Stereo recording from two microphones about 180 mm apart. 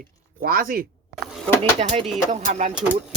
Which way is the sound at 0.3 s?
55° right (ahead or behind).